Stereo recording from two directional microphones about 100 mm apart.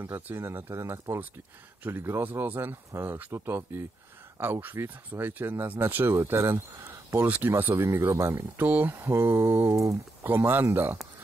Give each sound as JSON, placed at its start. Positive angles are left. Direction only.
{"t": 0.0, "sound": "speech", "side_deg": -20}
{"t": 10.2, "sound": "speech", "side_deg": -20}